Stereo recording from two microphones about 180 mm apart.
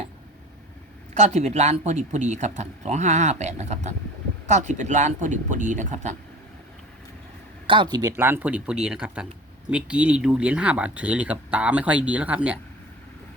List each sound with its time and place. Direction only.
1.1 s speech: 40° right (ahead or behind)
7.7 s speech: 25° right (ahead or behind); by 12.5 s 5° right (ahead or behind)